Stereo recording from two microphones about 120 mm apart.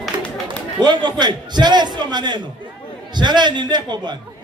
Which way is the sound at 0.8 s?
35° right (ahead or behind).